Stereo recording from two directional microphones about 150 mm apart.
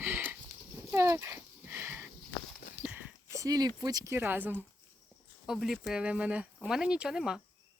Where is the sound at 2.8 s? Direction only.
10° right (ahead or behind).